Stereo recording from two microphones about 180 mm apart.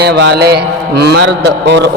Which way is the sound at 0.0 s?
65° right (ahead or behind).